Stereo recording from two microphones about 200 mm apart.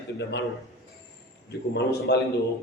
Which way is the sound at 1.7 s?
55° left (ahead or behind).